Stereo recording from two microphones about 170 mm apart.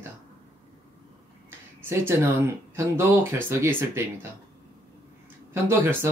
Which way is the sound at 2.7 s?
15° right (ahead or behind).